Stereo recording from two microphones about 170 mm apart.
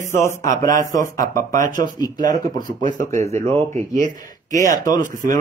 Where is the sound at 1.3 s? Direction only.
50° right (ahead or behind).